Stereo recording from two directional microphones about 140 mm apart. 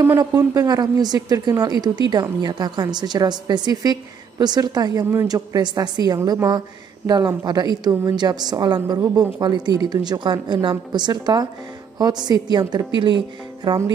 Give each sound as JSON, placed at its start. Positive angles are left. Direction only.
{"t": 0.2, "sound": "a woman's voice", "side_deg": -25}